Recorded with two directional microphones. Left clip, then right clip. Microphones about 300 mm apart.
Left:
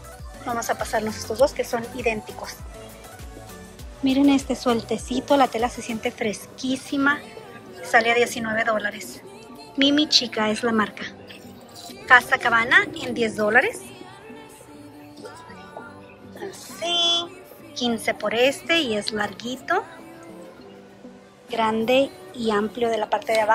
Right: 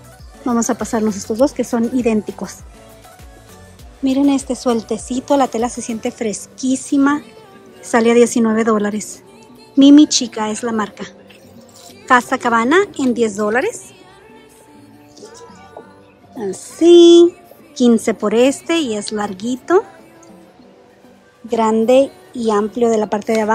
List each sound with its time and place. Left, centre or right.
0.6 s a woman's voice: right
4.0 s a woman's voice: centre
16.3 s a woman's voice: right
21.5 s speech: centre